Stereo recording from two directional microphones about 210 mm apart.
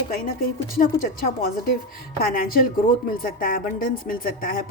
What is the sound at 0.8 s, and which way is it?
A woman's voice, 40° left (ahead or behind).